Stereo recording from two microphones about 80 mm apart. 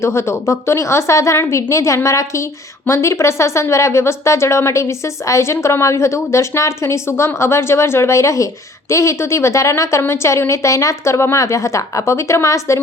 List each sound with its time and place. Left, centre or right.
0.0 s a woman's voice: left